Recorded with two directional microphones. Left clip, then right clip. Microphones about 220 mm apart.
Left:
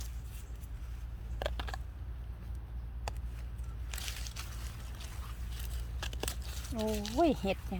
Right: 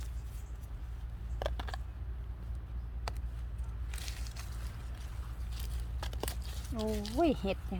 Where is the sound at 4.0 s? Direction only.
30° left (ahead or behind).